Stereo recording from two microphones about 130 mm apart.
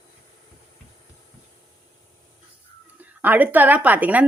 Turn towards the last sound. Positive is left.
turn(degrees=-10)  # may be behind; listen again after turning